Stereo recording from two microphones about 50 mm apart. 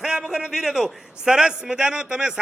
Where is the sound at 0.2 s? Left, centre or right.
Centre.